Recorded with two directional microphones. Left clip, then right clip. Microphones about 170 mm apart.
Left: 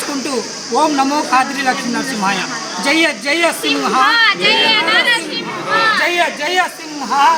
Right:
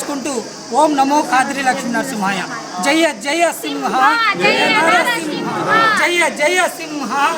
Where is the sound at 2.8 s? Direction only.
35° right (ahead or behind).